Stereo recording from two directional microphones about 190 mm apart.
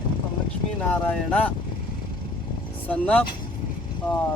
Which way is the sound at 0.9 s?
5° left (ahead or behind).